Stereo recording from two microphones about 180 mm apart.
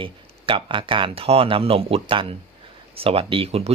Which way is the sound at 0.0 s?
30° right (ahead or behind).